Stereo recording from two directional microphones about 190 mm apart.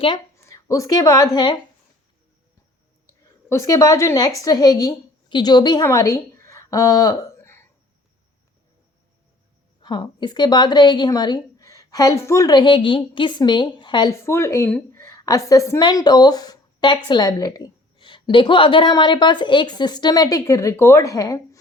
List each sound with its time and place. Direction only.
0.3 s a woman's voice: 15° left (ahead or behind)
3.5 s speech: 15° left (ahead or behind)
9.8 s a woman's voice: 25° left (ahead or behind)